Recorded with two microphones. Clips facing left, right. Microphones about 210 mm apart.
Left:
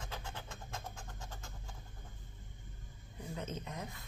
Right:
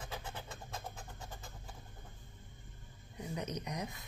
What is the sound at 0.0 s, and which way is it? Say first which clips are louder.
Vehicle: right 1 dB; 10° right (ahead or behind).